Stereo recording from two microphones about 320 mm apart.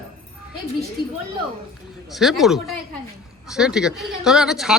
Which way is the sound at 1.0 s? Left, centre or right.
Right.